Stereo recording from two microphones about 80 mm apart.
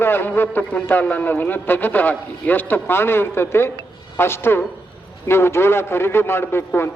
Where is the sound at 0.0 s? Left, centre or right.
Left.